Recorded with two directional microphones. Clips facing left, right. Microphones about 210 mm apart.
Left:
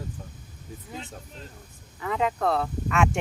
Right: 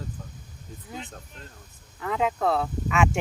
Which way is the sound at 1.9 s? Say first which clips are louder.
Even; centre (ahead or behind).